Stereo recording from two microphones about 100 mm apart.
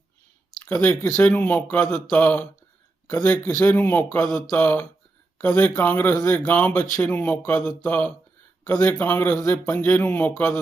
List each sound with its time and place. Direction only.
0.6 s speech: 15° left (ahead or behind)
6.1 s speech: 30° left (ahead or behind)
6.4 s a man's voice: 15° left (ahead or behind)
9.4 s speech: 30° left (ahead or behind)
9.7 s speech: 15° left (ahead or behind)